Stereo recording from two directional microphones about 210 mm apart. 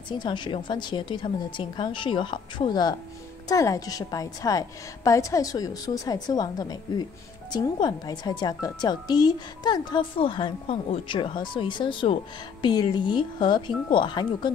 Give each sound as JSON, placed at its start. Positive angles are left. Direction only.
{"t": 0.1, "sound": "a woman's voice", "side_deg": 20}